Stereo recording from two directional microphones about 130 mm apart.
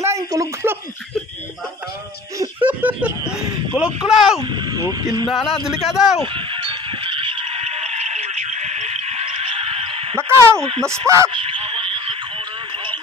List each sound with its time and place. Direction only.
0.0 s speech: 25° right (ahead or behind)
2.6 s speech: 10° right (ahead or behind)
4.4 s speech: 35° right (ahead or behind)
5.3 s speech: centre (ahead or behind)
6.2 s a sound: 40° right (ahead or behind)
10.2 s speech: 20° right (ahead or behind)
11.3 s a sound: 45° right (ahead or behind)